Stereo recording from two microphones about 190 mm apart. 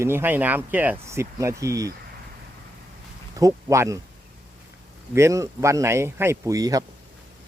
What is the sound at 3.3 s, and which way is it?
Speech, 20° right (ahead or behind).